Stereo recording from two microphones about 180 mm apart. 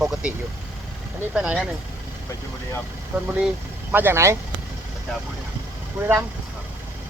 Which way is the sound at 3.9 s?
15° right (ahead or behind).